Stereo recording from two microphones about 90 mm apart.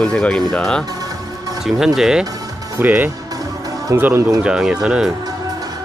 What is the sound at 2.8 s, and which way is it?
Speech, 20° right (ahead or behind).